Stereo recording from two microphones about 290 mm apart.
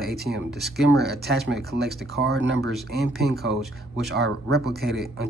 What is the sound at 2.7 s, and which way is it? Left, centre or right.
Speech, centre.